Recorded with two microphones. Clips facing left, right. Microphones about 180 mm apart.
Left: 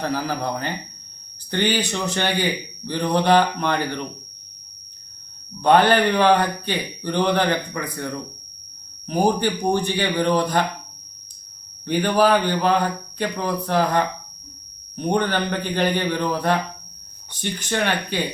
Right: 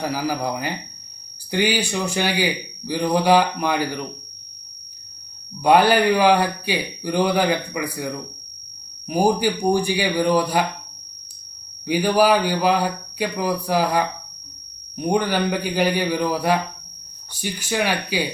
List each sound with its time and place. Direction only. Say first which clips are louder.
0.0 s a man's voice: right 1 dB; 10° right (ahead or behind)
5.6 s a man's voice: right 1 dB; 10° right (ahead or behind)
11.9 s a man's voice: right 1 dB; 10° right (ahead or behind)